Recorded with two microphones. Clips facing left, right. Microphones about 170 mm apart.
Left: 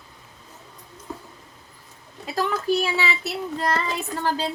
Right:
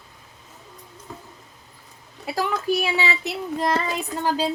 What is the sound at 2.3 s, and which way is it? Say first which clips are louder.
A woman's voice: even; 15° right (ahead or behind).